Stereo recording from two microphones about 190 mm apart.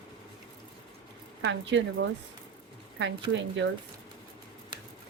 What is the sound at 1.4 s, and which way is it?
Speech, 70° right (ahead or behind).